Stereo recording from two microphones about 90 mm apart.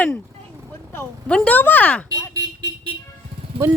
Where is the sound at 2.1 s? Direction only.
50° right (ahead or behind).